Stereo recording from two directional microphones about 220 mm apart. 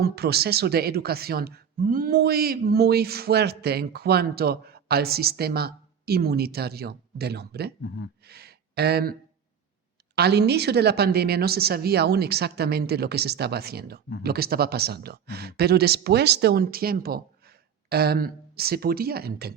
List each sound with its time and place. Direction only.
0.0 s speech: 45° right (ahead or behind)
8.2 s gasp: 45° right (ahead or behind)
10.2 s speech: 50° right (ahead or behind)